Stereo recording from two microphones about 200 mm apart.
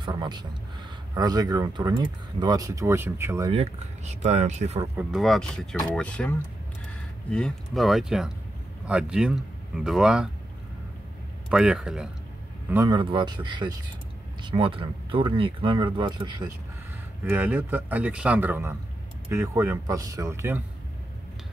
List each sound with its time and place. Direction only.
0.0 s speech: 20° right (ahead or behind)
3.5 s speech: 35° right (ahead or behind)
4.9 s speech: centre (ahead or behind)
11.4 s a man's voice: 5° right (ahead or behind)
12.9 s speech: 25° right (ahead or behind)
17.2 s speech: 10° right (ahead or behind)